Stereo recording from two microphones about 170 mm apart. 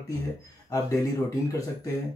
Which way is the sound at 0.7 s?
20° left (ahead or behind).